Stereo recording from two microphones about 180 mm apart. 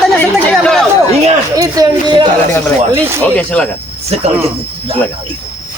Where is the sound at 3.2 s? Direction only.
5° left (ahead or behind).